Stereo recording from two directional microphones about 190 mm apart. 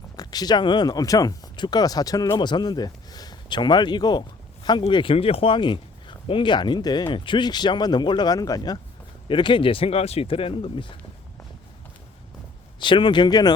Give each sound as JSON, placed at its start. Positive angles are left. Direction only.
{"t": 0.2, "sound": "speech", "side_deg": 20}
{"t": 12.8, "sound": "speech", "side_deg": 25}